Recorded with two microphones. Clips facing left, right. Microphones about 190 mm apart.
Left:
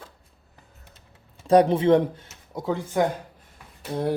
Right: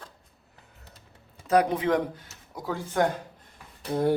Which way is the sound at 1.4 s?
30° left (ahead or behind).